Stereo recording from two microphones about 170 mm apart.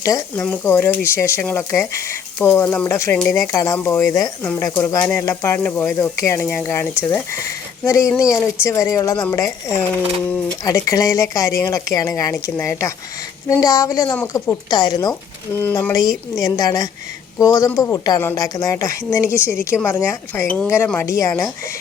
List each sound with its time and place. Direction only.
0.0 s a woman's voice: 20° left (ahead or behind)